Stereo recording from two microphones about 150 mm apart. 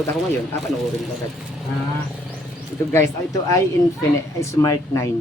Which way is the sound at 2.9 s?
20° left (ahead or behind).